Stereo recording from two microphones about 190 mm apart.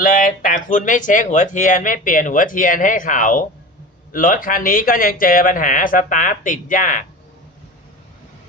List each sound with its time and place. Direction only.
0.0 s speech: 45° left (ahead or behind)